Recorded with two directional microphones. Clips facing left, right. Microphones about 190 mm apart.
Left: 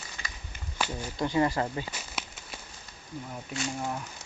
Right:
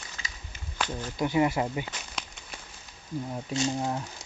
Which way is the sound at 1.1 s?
10° right (ahead or behind).